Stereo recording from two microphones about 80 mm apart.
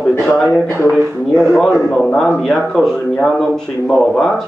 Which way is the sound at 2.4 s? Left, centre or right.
Centre.